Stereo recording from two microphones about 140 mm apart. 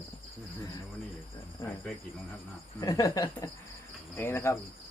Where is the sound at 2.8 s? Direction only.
25° left (ahead or behind).